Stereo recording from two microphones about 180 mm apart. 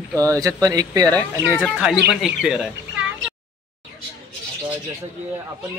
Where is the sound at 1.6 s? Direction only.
Centre (ahead or behind).